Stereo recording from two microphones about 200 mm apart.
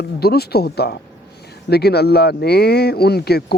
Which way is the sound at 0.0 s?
50° left (ahead or behind).